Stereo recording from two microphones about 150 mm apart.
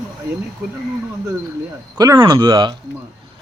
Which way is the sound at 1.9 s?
25° right (ahead or behind).